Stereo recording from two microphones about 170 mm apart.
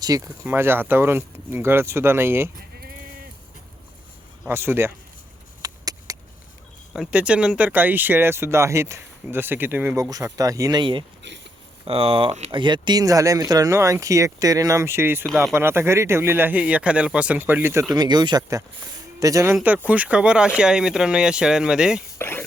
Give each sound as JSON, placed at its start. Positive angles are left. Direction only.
{"t": 0.0, "sound": "speech", "side_deg": -20}
{"t": 2.6, "sound": "sheep", "side_deg": -60}
{"t": 4.4, "sound": "speech", "side_deg": -15}
{"t": 5.6, "sound": "a sound", "side_deg": -20}
{"t": 6.9, "sound": "speech", "side_deg": -5}
{"t": 19.5, "sound": "speech", "side_deg": -10}
{"t": 22.2, "sound": "speech", "side_deg": 15}